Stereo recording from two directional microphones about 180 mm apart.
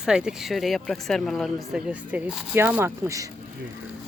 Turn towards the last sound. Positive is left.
turn(degrees=-15)  # may be behind; listen again after turning